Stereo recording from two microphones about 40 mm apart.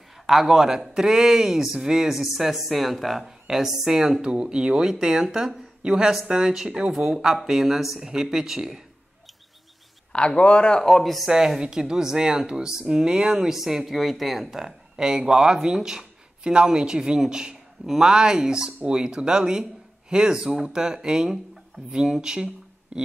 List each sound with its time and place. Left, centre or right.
0.3 s speech: centre
10.1 s speech: left
10.8 s speech: centre
11.2 s speech: centre